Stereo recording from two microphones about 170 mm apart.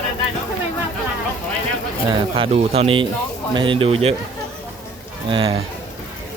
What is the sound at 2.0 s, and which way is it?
Speech, 30° right (ahead or behind).